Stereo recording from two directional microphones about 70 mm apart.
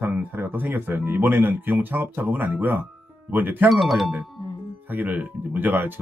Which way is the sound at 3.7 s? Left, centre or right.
Centre.